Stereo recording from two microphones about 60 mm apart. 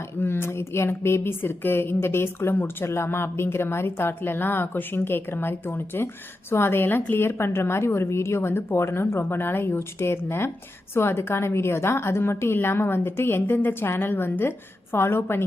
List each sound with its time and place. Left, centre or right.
0.2 s a woman's voice: left